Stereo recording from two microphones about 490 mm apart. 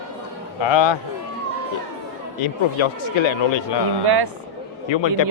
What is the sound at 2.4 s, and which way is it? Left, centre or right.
Speech, left.